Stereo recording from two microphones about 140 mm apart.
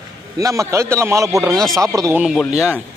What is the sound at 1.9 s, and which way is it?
Speech, 25° right (ahead or behind).